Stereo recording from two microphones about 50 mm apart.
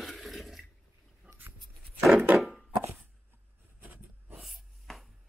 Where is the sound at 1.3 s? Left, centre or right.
Right.